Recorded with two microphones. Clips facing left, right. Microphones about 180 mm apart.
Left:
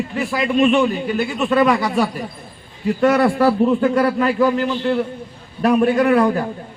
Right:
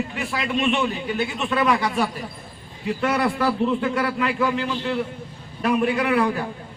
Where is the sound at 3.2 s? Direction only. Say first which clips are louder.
Left 7 dB; 45° left (ahead or behind).